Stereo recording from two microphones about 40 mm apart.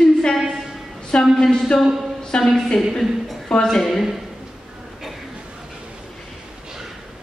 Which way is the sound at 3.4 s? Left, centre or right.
Centre.